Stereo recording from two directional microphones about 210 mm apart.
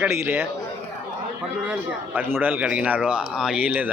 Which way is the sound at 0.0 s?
10° right (ahead or behind).